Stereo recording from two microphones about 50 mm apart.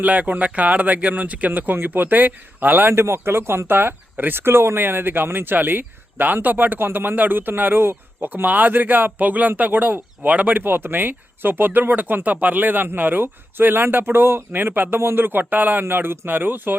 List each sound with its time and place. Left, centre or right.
0.0 s speech: right
2.9 s speech: right